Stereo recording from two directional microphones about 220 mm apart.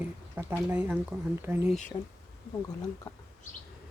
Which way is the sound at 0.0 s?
10° right (ahead or behind).